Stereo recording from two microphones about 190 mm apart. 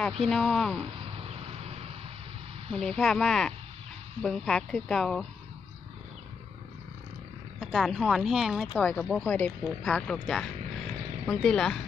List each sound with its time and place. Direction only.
0.3 s speech: centre (ahead or behind)
1.0 s vehicle: 30° right (ahead or behind)
2.7 s speech: 5° left (ahead or behind)
7.6 s speech: centre (ahead or behind)